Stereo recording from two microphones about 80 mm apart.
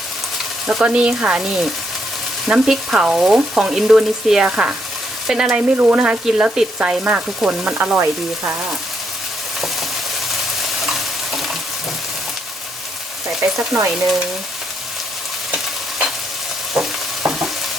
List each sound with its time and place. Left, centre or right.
0.7 s frying: centre
5.7 s frying: centre
10.8 s stir: centre
13.6 s stir: right
15.5 s stir: centre
17.2 s stir: centre